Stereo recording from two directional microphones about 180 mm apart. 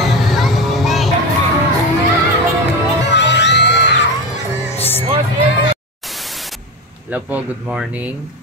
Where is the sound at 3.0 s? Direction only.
75° left (ahead or behind).